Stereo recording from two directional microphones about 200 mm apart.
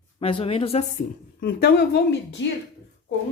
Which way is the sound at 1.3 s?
50° left (ahead or behind).